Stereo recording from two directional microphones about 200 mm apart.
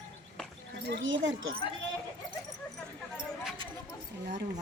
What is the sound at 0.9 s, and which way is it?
Speech, 65° right (ahead or behind).